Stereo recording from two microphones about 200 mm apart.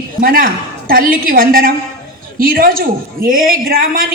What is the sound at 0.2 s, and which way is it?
A woman's voice, 45° right (ahead or behind).